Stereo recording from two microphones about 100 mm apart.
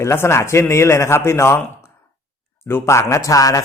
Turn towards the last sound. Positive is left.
turn(degrees=35)  # may be behind; listen again after turning